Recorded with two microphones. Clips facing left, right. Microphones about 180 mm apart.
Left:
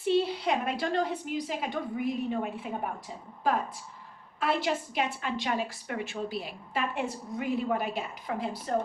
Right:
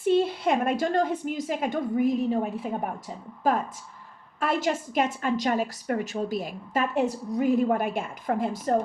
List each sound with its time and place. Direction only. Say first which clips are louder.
0.0 s a woman's voice: right 4 dB; 50° right (ahead or behind)